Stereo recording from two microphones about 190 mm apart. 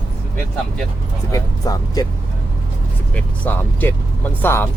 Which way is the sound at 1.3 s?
20° left (ahead or behind).